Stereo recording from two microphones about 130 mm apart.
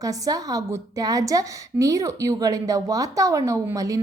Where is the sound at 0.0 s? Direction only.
30° right (ahead or behind).